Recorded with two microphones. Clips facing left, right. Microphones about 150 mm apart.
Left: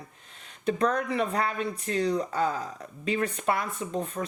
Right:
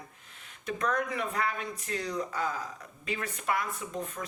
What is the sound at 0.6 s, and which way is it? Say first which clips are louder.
Speech: left 5 dB; 30° left (ahead or behind).